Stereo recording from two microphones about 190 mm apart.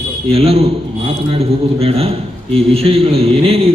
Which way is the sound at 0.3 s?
30° right (ahead or behind).